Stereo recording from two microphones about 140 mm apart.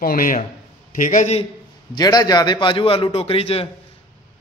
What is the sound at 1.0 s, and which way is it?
Speech, 65° left (ahead or behind).